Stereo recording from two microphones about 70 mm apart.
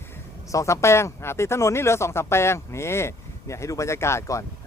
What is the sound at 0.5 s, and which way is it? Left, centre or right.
Speech, left.